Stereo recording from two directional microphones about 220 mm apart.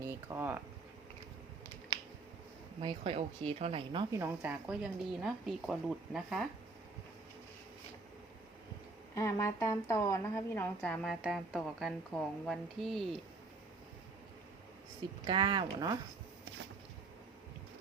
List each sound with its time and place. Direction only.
0.0 s speech: 10° right (ahead or behind)
2.8 s speech: 25° right (ahead or behind)
4.1 s a woman's voice: 10° right (ahead or behind)
9.1 s a woman's voice: 15° left (ahead or behind)
15.3 s speech: 20° right (ahead or behind)